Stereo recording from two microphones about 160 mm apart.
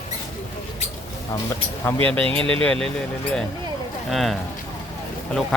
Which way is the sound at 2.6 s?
5° left (ahead or behind).